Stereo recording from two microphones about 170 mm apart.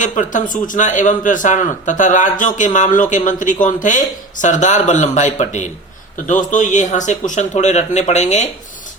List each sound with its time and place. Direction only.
0.0 s speech: 50° left (ahead or behind)